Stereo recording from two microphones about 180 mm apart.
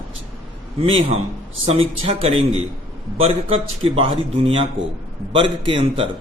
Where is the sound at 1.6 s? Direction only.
30° right (ahead or behind).